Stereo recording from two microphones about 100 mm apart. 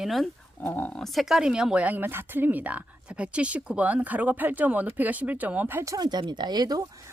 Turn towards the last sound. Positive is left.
turn(degrees=-45)  # may be behind; listen again after turning